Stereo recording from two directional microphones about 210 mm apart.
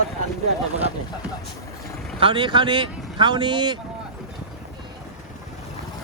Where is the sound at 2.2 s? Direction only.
25° right (ahead or behind).